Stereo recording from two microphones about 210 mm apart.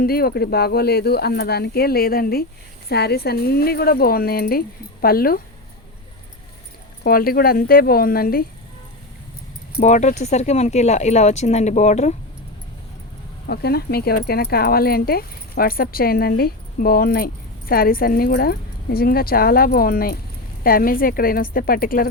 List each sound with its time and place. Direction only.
0.0 s speech: 45° left (ahead or behind)
7.0 s speech: 45° left (ahead or behind)
9.7 s speech: 35° left (ahead or behind)
13.5 s speech: 50° left (ahead or behind)